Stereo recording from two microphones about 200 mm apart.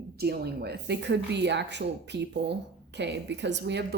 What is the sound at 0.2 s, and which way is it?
A woman's voice, 55° right (ahead or behind).